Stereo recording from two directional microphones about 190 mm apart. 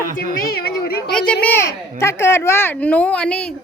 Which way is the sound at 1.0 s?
5° left (ahead or behind).